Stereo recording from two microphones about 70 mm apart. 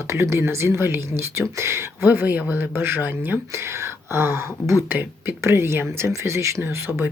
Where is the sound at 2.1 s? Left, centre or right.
Right.